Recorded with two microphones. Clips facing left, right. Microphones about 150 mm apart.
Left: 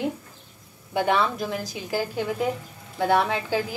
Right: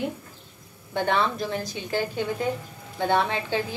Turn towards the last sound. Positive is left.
turn(degrees=5)  # may be behind; listen again after turning